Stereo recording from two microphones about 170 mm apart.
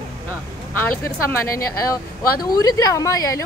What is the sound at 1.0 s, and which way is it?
A woman's voice, 20° left (ahead or behind).